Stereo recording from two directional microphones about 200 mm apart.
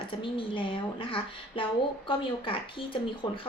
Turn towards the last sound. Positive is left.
turn(degrees=25)  # may be behind; listen again after turning